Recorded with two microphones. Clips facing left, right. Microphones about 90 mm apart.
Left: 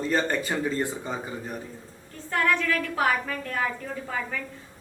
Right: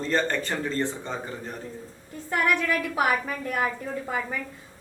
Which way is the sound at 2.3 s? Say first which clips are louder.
Even; 15° right (ahead or behind).